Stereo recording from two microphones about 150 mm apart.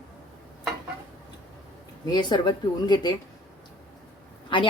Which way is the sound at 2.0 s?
30° left (ahead or behind).